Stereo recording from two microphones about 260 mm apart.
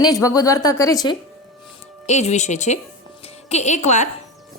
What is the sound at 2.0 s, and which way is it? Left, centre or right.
A woman's voice, left.